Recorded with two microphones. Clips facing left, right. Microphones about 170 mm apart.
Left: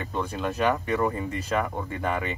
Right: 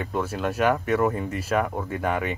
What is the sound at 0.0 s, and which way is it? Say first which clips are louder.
Speech: right 3 dB; 5° right (ahead or behind).